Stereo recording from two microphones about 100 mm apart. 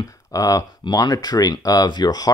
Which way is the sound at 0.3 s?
35° left (ahead or behind).